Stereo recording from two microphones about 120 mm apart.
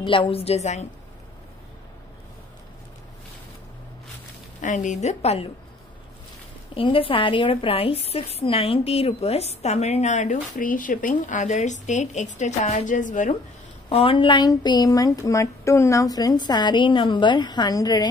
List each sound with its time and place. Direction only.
0.0 s a woman's voice: 45° left (ahead or behind); by 0.8 s 70° left (ahead or behind)
4.6 s a woman's voice: 90° left; by 5.5 s 60° left (ahead or behind)
6.7 s a woman's voice: 50° left (ahead or behind); by 13.3 s 90° left
13.8 s a woman's voice: 50° left (ahead or behind)